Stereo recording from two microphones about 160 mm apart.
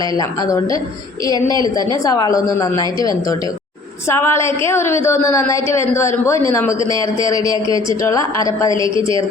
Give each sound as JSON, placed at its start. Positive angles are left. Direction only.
{"t": 0.2, "sound": "a woman's voice", "side_deg": 20}
{"t": 2.0, "sound": "a woman's voice", "side_deg": 25}
{"t": 4.1, "sound": "a woman's voice", "side_deg": 15}
{"t": 8.7, "sound": "a woman's voice", "side_deg": -30}